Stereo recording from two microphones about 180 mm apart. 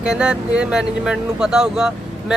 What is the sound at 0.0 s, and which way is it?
Speech, 5° right (ahead or behind).